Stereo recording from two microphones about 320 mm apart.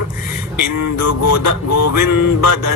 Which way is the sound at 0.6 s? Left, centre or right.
Left.